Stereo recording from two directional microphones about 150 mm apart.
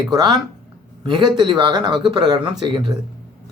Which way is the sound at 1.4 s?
30° right (ahead or behind).